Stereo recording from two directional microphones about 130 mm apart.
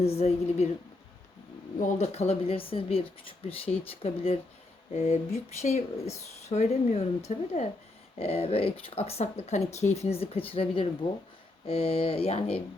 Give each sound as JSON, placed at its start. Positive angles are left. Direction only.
{"t": 0.0, "sound": "speech", "side_deg": 50}
{"t": 1.8, "sound": "speech", "side_deg": 60}
{"t": 8.2, "sound": "speech", "side_deg": 50}